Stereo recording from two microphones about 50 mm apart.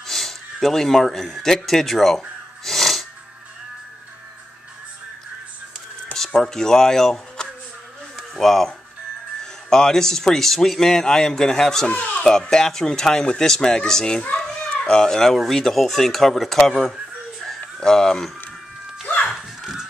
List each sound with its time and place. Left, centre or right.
0.0 s speech: centre
2.6 s music: centre
6.1 s speech: centre
11.9 s a child's voice: left
14.4 s a sound: centre
15.3 s speech: centre
19.0 s music: left
19.3 s a sound: centre